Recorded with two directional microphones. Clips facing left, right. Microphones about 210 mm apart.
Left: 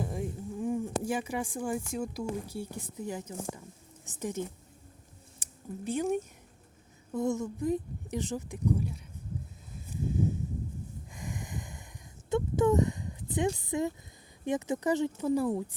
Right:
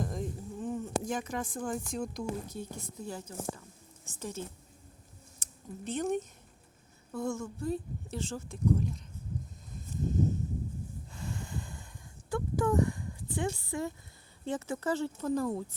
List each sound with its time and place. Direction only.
0.0 s speech: 10° left (ahead or behind)
7.1 s speech: 20° left (ahead or behind)
9.7 s a sound: 10° left (ahead or behind)
11.1 s snort: 15° left (ahead or behind)
12.3 s a sound: 20° left (ahead or behind)
14.4 s speech: 15° left (ahead or behind)